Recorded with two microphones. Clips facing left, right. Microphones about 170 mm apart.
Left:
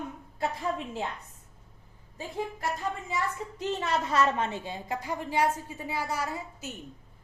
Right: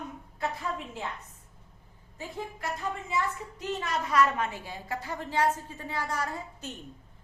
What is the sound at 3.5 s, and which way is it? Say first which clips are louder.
A woman's voice: left 4 dB; 30° left (ahead or behind).